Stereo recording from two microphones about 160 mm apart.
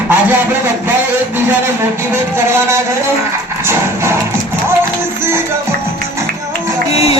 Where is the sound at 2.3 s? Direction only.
15° right (ahead or behind).